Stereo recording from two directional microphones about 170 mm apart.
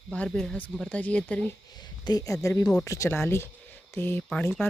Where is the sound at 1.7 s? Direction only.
25° left (ahead or behind); by 4.5 s 10° left (ahead or behind).